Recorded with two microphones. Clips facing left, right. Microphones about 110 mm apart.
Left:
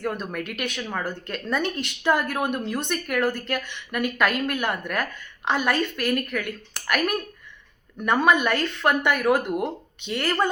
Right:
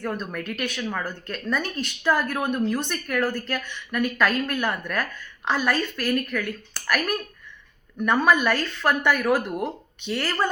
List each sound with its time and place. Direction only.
0.0 s a woman's voice: 15° left (ahead or behind)